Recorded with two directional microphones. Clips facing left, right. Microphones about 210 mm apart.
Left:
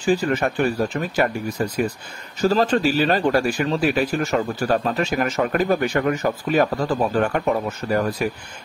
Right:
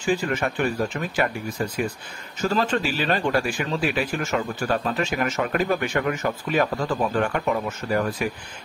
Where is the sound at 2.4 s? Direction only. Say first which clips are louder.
Left 5 dB; 35° left (ahead or behind).